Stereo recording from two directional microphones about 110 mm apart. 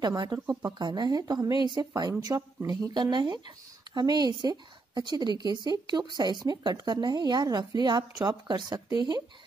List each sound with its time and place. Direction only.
0.0 s speech: 40° right (ahead or behind)
0.5 s speech: 30° right (ahead or behind)